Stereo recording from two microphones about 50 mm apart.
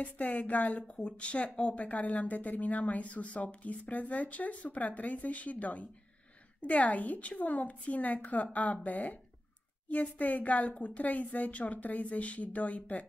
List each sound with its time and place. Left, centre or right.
0.0 s a woman's voice: left
0.9 s a woman's voice: left